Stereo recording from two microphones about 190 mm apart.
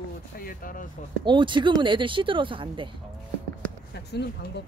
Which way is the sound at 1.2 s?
25° right (ahead or behind).